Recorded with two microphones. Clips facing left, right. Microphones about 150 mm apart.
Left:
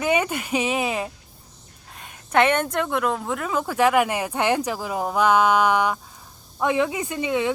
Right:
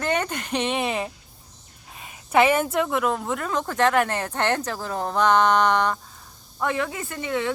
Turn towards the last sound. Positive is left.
turn(degrees=15)  # may be behind; listen again after turning